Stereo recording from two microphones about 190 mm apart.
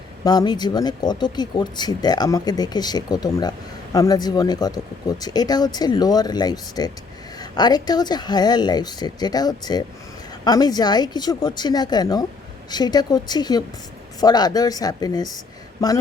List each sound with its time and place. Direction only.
0.3 s speech: 20° left (ahead or behind)